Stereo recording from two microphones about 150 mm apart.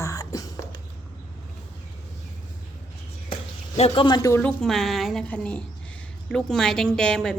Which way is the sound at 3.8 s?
45° left (ahead or behind).